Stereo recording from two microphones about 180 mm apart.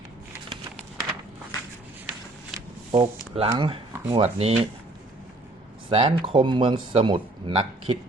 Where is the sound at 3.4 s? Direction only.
25° right (ahead or behind).